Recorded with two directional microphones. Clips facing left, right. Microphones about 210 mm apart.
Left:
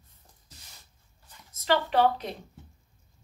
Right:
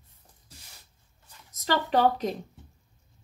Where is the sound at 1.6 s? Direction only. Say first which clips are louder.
Even; 40° right (ahead or behind).